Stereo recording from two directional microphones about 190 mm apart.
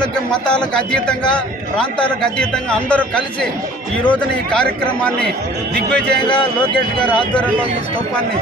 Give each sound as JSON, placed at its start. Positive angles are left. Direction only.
{"t": 0.3, "sound": "speech", "side_deg": 5}
{"t": 6.2, "sound": "speech", "side_deg": 25}
{"t": 7.0, "sound": "speech", "side_deg": 5}